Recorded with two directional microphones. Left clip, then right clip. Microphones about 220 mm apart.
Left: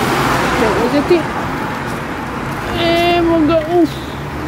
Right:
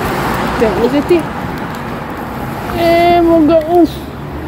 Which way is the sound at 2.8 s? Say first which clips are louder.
Right 4 dB; 15° right (ahead or behind).